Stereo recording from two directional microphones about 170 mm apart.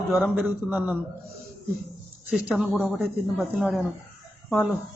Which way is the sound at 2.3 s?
5° right (ahead or behind).